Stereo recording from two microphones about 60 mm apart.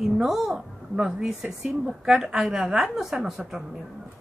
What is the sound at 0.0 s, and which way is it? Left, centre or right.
A woman's voice, centre.